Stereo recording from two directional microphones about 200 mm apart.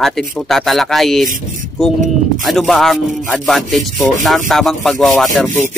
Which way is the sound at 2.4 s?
Centre (ahead or behind).